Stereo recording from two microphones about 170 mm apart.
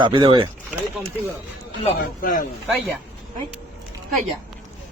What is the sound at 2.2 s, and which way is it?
Speech, 55° left (ahead or behind).